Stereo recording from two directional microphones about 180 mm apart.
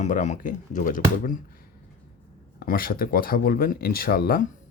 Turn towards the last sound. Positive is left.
turn(degrees=55)  # may be behind; listen again after turning